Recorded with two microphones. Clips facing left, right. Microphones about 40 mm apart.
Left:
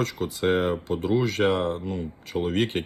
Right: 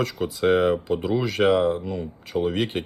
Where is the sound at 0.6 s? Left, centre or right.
Right.